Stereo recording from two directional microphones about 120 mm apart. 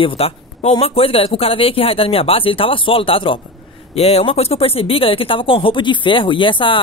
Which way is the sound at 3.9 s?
60° left (ahead or behind).